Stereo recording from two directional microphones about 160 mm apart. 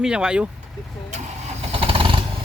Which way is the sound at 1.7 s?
35° right (ahead or behind).